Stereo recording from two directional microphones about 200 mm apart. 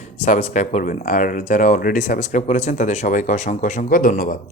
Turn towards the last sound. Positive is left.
turn(degrees=45)  # may be behind; listen again after turning